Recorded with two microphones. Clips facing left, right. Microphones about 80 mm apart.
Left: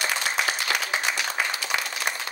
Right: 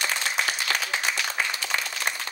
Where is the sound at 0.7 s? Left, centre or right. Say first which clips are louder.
Left 1 dB; left.